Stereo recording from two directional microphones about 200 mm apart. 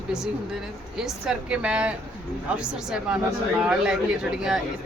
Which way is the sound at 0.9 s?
5° right (ahead or behind).